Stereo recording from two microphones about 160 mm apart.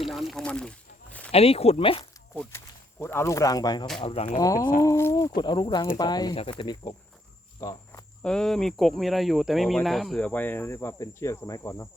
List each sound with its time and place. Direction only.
0.0 s a sound: centre (ahead or behind)
1.3 s speech: 40° left (ahead or behind)
2.3 s speech: 10° left (ahead or behind)
4.0 s speech: 40° left (ahead or behind)
4.4 s speech: 20° left (ahead or behind)
7.6 s cricket: 20° left (ahead or behind)
8.2 s speech: 5° left (ahead or behind)